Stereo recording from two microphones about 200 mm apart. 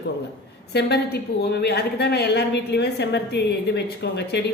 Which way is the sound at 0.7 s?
55° left (ahead or behind).